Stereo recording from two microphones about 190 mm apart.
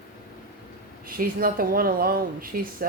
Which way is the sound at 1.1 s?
50° right (ahead or behind).